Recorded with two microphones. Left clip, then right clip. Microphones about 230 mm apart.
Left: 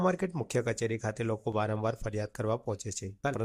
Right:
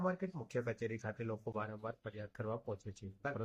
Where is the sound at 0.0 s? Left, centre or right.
Left.